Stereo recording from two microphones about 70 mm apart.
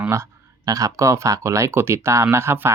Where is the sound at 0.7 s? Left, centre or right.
Right.